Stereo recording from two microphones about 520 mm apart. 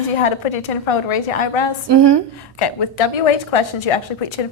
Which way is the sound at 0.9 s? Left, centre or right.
Left.